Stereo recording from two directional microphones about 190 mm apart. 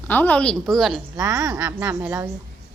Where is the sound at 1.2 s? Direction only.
20° right (ahead or behind).